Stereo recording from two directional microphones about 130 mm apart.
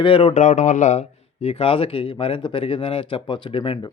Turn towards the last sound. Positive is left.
turn(degrees=45)  # may be behind; listen again after turning